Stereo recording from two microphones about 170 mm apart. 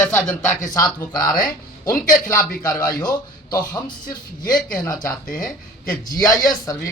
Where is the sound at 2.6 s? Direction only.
20° left (ahead or behind).